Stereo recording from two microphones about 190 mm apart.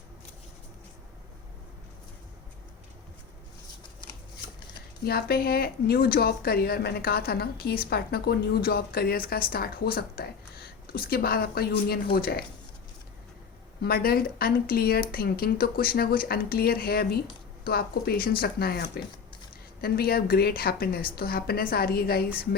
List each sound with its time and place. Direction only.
4.0 s shuffling cards: 25° left (ahead or behind)
5.0 s speech: 55° left (ahead or behind)
13.8 s speech: 55° left (ahead or behind)